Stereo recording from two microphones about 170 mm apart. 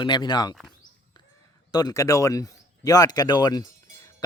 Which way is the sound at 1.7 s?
20° left (ahead or behind).